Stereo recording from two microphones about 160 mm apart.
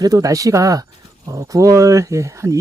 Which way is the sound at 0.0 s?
20° right (ahead or behind).